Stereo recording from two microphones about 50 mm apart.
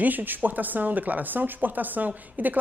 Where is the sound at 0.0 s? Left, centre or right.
Right.